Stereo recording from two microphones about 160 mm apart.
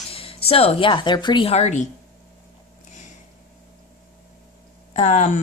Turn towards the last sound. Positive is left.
turn(degrees=50)  # may be behind; listen again after turning